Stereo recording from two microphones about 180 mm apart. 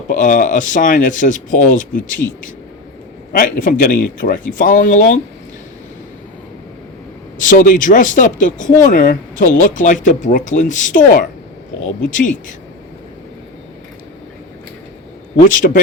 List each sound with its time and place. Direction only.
0.1 s speech: 45° left (ahead or behind)
3.3 s speech: 50° left (ahead or behind)
7.3 s speech: 45° left (ahead or behind)
15.4 s speech: 50° left (ahead or behind)